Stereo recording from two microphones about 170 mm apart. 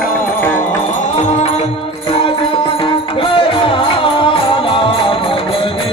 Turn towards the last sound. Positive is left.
turn(degrees=30)  # may be behind; listen again after turning